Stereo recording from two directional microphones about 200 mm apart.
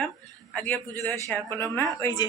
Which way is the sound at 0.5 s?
10° left (ahead or behind).